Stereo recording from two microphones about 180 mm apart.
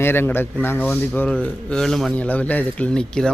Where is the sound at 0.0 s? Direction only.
10° left (ahead or behind).